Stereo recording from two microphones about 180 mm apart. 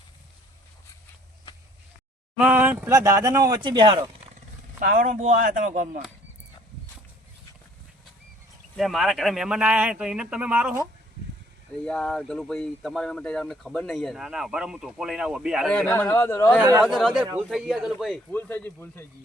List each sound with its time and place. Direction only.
2.4 s speech: 10° right (ahead or behind); by 4.0 s 25° right (ahead or behind)
4.8 s speech: 50° right (ahead or behind)
8.7 s speech: centre (ahead or behind)
11.9 s speech: 5° left (ahead or behind)
15.7 s speech: 10° left (ahead or behind)
16.8 s speech: centre (ahead or behind)
18.3 s speech: 10° left (ahead or behind)